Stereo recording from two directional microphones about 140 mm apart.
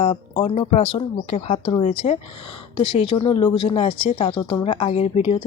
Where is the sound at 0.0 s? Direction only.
45° left (ahead or behind).